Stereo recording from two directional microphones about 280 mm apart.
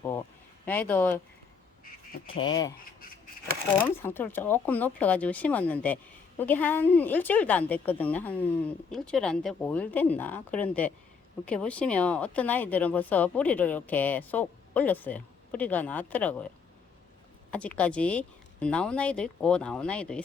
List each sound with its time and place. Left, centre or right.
0.6 s speech: centre
2.4 s speech: centre
3.8 s speech: centre
17.5 s speech: centre